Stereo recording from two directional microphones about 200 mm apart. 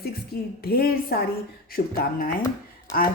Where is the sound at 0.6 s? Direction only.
50° left (ahead or behind).